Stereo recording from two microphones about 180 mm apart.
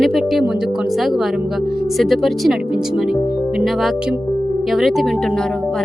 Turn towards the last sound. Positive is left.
turn(degrees=0)  # may be behind; listen again after turning